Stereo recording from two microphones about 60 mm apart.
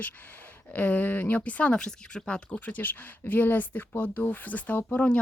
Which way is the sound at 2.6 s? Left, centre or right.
Left.